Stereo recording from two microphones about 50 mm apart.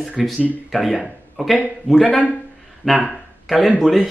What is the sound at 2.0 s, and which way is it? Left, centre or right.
Speech, left.